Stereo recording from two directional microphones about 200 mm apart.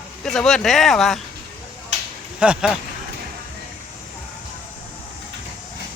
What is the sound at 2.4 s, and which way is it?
Speech, 5° right (ahead or behind).